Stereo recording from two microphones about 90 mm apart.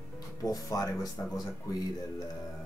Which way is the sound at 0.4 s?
45° left (ahead or behind).